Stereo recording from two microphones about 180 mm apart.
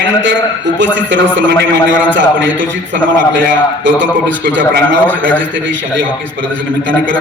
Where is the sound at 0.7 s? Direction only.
90° right.